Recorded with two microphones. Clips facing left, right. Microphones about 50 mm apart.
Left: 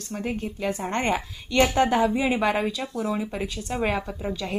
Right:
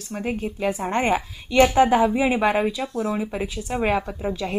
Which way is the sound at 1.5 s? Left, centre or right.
Right.